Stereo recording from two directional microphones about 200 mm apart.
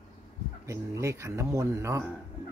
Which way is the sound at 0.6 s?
15° right (ahead or behind).